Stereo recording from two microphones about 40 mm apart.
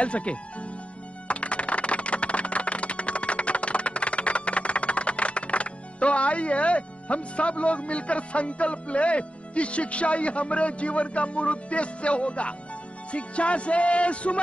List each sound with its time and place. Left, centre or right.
0.0 s music: left